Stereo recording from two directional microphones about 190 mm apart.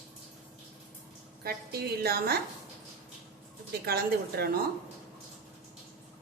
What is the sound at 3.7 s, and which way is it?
Speech, 55° right (ahead or behind).